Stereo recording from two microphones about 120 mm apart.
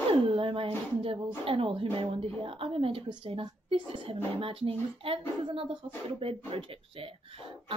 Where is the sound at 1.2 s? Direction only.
50° right (ahead or behind).